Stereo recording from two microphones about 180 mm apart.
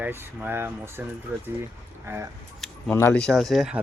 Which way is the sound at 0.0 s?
10° right (ahead or behind).